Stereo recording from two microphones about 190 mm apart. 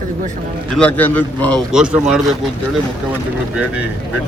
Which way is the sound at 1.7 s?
5° right (ahead or behind).